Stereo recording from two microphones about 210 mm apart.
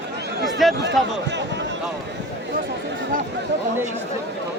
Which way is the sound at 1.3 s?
55° right (ahead or behind).